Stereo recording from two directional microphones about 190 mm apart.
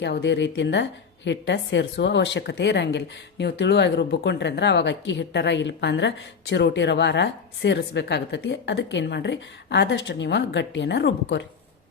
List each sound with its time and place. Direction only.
0.0 s a woman's voice: 60° left (ahead or behind)